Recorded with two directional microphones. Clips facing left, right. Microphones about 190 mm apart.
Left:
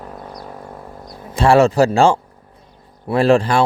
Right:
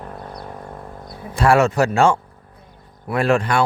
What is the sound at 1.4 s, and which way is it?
Speech, 30° left (ahead or behind).